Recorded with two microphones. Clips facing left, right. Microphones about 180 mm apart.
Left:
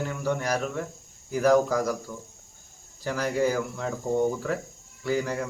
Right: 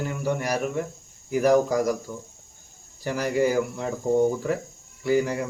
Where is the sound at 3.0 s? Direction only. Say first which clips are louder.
Right 2 dB; 20° right (ahead or behind).